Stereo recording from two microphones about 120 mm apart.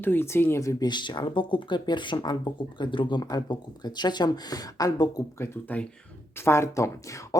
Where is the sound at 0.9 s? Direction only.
40° left (ahead or behind).